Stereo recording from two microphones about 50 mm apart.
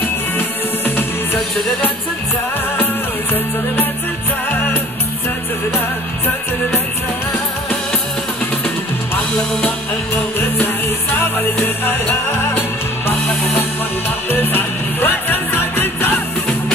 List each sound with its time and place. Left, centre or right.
0.4 s music: left
4.5 s music: left
5.7 s music: left
10.6 s music: left
13.0 s music: left